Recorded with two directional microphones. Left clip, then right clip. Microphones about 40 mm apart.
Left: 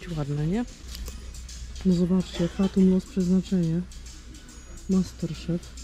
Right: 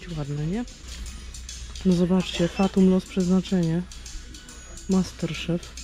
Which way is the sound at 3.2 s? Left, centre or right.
Right.